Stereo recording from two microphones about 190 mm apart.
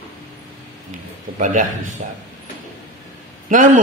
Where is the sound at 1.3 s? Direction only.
45° right (ahead or behind).